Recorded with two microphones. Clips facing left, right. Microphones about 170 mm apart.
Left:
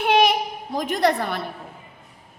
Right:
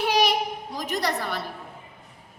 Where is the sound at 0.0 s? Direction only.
55° left (ahead or behind).